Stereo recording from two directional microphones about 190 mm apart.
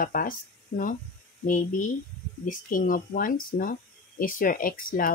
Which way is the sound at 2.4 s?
45° left (ahead or behind).